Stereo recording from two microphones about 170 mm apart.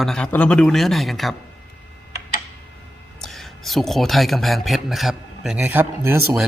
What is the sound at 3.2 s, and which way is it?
A man's voice, centre (ahead or behind).